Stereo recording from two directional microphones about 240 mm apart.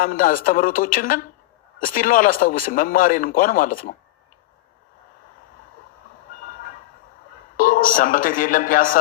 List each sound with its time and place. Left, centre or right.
0.0 s a man's voice: left
7.5 s a man's voice: left